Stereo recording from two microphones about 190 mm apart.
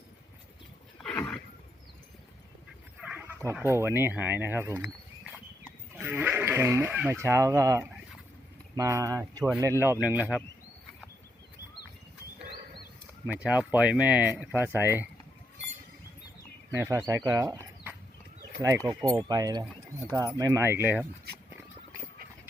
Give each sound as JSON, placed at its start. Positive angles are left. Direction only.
{"t": 1.0, "sound": "a sound", "side_deg": 5}
{"t": 3.0, "sound": "speech", "side_deg": -5}
{"t": 6.0, "sound": "speech", "side_deg": -10}
{"t": 13.2, "sound": "speech", "side_deg": -5}
{"t": 16.7, "sound": "speech", "side_deg": -15}
{"t": 18.9, "sound": "speech", "side_deg": -20}